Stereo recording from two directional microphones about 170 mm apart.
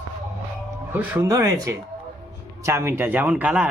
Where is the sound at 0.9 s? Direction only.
15° right (ahead or behind).